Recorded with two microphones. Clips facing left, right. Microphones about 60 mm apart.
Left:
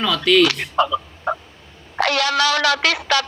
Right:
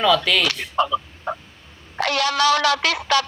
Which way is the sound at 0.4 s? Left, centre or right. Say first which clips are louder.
Left 3 dB; left.